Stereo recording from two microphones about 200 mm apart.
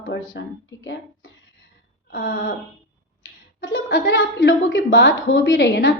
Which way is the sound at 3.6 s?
65° left (ahead or behind).